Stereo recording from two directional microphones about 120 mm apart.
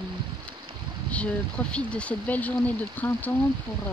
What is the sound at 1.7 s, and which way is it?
Speech, 10° left (ahead or behind).